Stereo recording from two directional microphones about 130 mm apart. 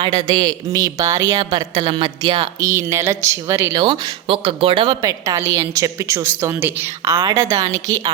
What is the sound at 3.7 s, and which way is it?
A woman's voice, 40° right (ahead or behind).